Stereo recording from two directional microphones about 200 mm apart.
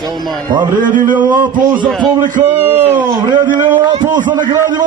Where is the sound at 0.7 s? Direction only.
40° right (ahead or behind).